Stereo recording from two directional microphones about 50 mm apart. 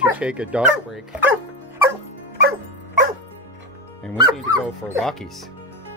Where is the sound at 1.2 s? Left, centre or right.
Right.